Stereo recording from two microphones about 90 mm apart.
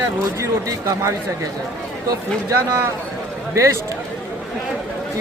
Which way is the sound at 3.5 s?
35° right (ahead or behind).